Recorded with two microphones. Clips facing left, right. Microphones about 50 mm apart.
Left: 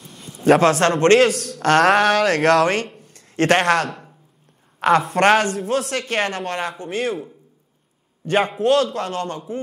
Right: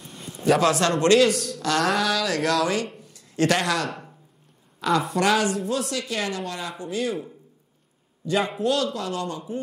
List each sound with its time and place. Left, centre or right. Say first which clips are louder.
0.0 s a sound: even; centre
0.5 s speech: left 5 dB; left
1.2 s speech: left 4 dB; left
3.0 s a sound: left 3 dB; left
4.7 s speech: left 6 dB; left
8.3 s speech: left 6 dB; left